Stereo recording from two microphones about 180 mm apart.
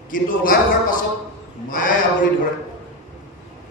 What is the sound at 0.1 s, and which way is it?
A man's voice, 50° left (ahead or behind).